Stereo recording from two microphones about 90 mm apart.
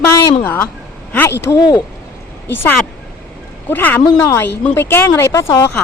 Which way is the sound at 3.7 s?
20° left (ahead or behind).